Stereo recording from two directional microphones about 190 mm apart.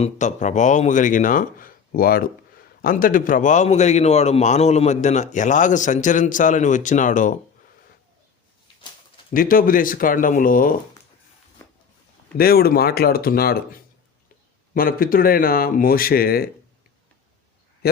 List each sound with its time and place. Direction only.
0.0 s a man's voice: 40° left (ahead or behind)
9.3 s speech: 50° left (ahead or behind)
11.6 s a sound: 15° left (ahead or behind)
12.4 s speech: 55° left (ahead or behind)